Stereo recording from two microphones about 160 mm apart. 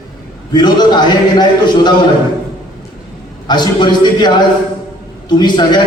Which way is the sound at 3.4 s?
25° left (ahead or behind).